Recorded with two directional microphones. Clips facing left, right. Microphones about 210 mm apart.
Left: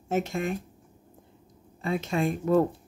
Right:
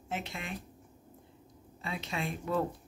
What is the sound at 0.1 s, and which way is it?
Speech, 45° left (ahead or behind).